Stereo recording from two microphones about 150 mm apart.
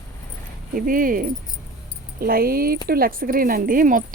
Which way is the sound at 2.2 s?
85° right.